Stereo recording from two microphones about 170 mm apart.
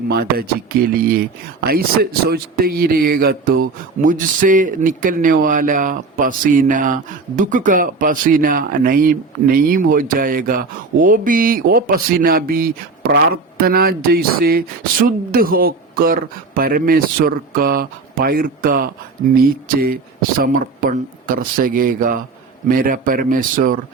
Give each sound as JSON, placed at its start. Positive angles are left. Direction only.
{"t": 0.1, "sound": "speech", "side_deg": -65}
{"t": 20.4, "sound": "speech", "side_deg": -50}